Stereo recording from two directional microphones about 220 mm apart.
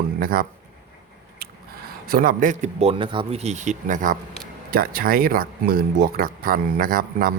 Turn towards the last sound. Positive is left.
turn(degrees=-40)  # may be behind; listen again after turning